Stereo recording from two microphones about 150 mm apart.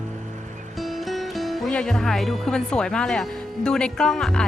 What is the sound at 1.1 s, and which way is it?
Speech, centre (ahead or behind).